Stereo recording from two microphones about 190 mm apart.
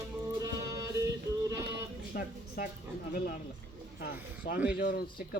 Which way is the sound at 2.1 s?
55° left (ahead or behind).